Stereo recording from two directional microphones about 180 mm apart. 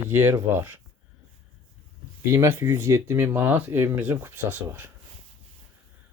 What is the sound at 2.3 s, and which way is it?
Speech, 15° right (ahead or behind).